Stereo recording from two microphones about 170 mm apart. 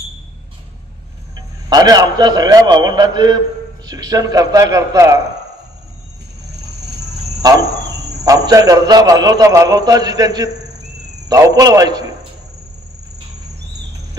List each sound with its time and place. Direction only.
1.3 s a man's voice: 25° right (ahead or behind)
8.3 s a man's voice: 20° right (ahead or behind)